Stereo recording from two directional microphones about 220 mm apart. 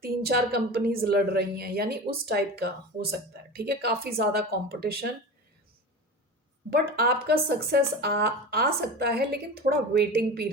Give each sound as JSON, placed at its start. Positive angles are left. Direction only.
{"t": 0.0, "sound": "a woman's voice", "side_deg": -45}
{"t": 6.7, "sound": "a woman's voice", "side_deg": -45}